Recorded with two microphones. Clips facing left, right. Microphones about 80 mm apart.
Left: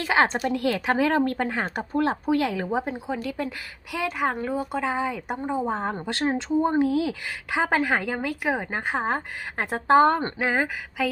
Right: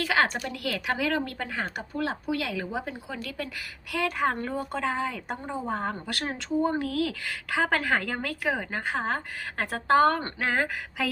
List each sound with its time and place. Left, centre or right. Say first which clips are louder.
0.0 s speech: left 3 dB; left
0.4 s speech: left 7 dB; left
0.9 s speech: left 7 dB; left
3.9 s speech: left 1 dB; centre
10.5 s speech: left 2 dB; centre